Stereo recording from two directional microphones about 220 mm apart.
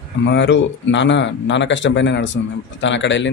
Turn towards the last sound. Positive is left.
turn(degrees=55)  # may be behind; listen again after turning